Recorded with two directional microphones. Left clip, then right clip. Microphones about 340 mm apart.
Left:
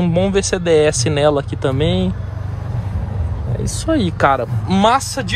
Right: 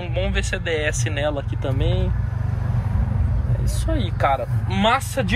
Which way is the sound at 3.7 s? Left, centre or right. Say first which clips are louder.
Left 10 dB; left.